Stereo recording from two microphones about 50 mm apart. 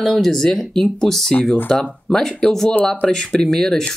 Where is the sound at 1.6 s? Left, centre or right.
Left.